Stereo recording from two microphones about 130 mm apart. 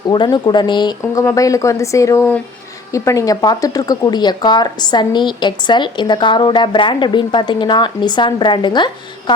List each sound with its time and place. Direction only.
0.1 s speech: 35° left (ahead or behind)
1.2 s speech: 25° left (ahead or behind)